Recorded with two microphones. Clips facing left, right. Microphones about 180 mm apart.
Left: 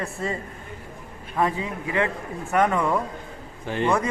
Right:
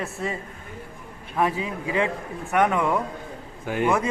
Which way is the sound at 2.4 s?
Centre (ahead or behind).